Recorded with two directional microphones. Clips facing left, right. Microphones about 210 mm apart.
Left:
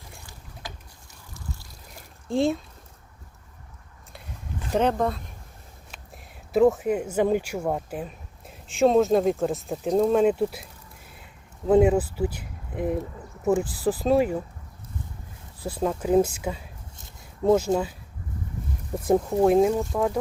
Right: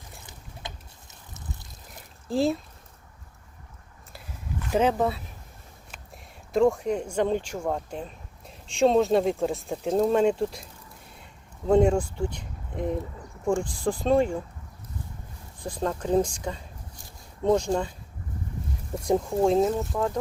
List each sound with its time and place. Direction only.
0.2 s boat: 20° right (ahead or behind)
1.3 s trickle: 20° right (ahead or behind)
2.2 s speech: centre (ahead or behind)
4.7 s speech: 5° right (ahead or behind)
6.5 s speech: 5° left (ahead or behind)
15.6 s speech: 5° left (ahead or behind)
18.9 s speech: 5° left (ahead or behind)